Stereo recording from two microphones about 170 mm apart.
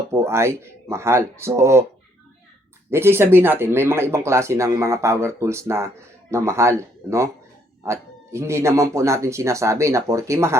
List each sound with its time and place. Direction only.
0.1 s speech: 15° right (ahead or behind)
2.9 s speech: 15° right (ahead or behind)